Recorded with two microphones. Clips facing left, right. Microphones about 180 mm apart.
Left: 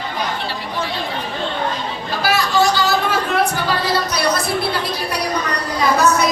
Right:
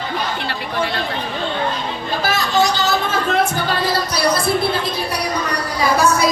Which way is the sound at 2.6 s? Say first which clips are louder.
Even; 20° right (ahead or behind).